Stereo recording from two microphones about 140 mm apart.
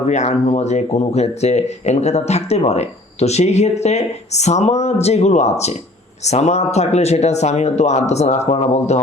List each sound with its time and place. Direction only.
0.0 s speech: 55° left (ahead or behind)